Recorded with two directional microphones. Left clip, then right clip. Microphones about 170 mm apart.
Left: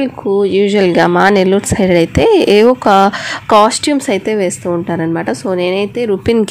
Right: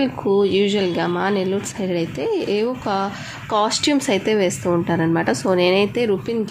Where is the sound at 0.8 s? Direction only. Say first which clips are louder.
Left 11 dB; 50° left (ahead or behind).